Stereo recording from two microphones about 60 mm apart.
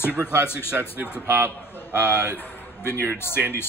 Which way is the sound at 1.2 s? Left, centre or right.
Right.